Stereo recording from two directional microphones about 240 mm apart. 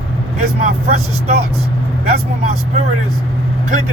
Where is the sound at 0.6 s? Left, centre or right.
Right.